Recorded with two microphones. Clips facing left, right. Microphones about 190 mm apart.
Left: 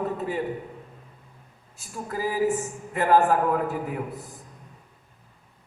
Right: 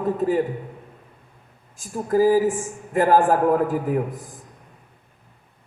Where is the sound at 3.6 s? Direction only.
90° right.